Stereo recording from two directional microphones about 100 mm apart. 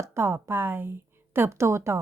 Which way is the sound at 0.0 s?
30° right (ahead or behind).